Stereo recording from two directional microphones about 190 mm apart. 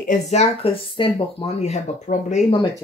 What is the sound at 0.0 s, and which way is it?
Speech, 40° left (ahead or behind).